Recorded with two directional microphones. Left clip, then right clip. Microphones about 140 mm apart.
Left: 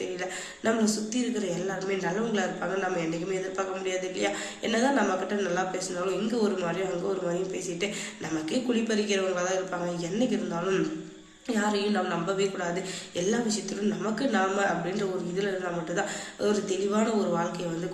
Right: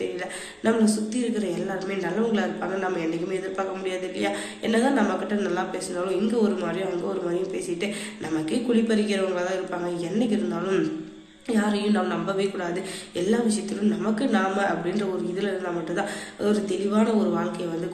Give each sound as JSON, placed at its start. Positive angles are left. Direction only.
{"t": 0.6, "sound": "a woman's voice", "side_deg": 15}
{"t": 8.4, "sound": "a woman's voice", "side_deg": 15}